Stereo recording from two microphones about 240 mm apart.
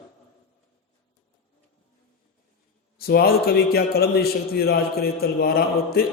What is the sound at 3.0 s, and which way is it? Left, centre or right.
A man's voice, left.